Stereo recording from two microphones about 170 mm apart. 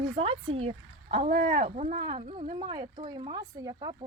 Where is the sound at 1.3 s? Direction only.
50° right (ahead or behind).